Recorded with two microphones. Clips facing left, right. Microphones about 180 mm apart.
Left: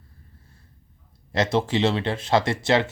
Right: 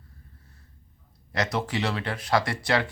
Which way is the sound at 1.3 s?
25° left (ahead or behind).